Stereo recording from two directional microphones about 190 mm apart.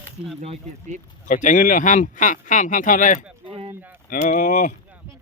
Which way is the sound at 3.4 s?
30° right (ahead or behind).